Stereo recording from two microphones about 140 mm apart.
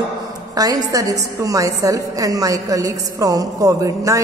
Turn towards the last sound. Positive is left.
turn(degrees=-25)  # may be behind; listen again after turning